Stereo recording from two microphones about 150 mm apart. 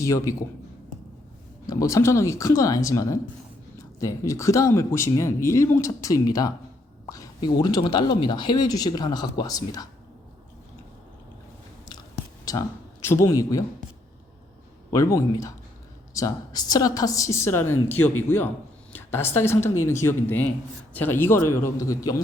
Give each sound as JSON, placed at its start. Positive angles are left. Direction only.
{"t": 0.0, "sound": "a woman's voice", "side_deg": 20}
{"t": 1.6, "sound": "a woman's voice", "side_deg": 25}
{"t": 12.5, "sound": "speech", "side_deg": 20}
{"t": 14.8, "sound": "a woman's voice", "side_deg": 20}